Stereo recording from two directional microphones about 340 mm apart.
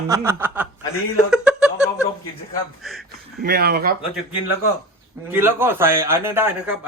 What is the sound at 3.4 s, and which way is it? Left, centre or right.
Speech, right.